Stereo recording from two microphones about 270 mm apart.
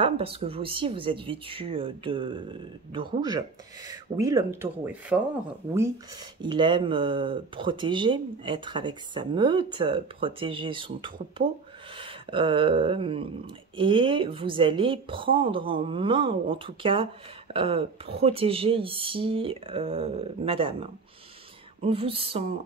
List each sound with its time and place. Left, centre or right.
0.0 s a woman's voice: centre
6.4 s speech: centre
12.0 s a sound: centre
13.7 s a woman's voice: centre